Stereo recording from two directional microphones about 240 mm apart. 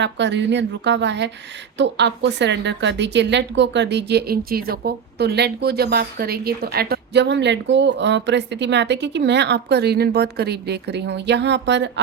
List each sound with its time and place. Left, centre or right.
0.0 s a woman's voice: right